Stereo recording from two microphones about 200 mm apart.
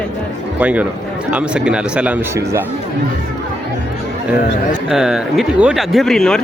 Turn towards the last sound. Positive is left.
turn(degrees=5)  # may be behind; listen again after turning